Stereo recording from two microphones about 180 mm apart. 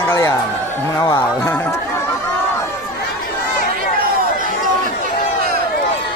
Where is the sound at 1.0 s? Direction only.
20° left (ahead or behind).